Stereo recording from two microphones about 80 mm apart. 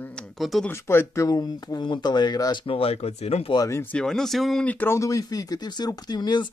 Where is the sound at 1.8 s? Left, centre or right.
Left.